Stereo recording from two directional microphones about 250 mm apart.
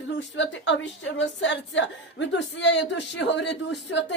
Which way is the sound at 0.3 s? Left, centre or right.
Left.